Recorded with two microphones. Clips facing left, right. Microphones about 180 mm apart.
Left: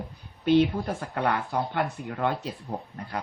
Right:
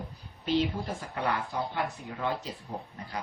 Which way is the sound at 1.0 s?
60° left (ahead or behind).